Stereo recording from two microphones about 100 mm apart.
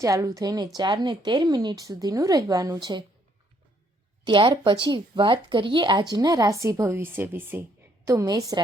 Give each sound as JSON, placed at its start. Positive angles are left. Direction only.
{"t": 0.0, "sound": "speech", "side_deg": -35}
{"t": 4.2, "sound": "speech", "side_deg": -55}
{"t": 8.0, "sound": "speech", "side_deg": -35}